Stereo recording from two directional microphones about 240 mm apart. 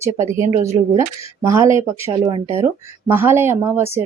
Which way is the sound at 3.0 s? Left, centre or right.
Centre.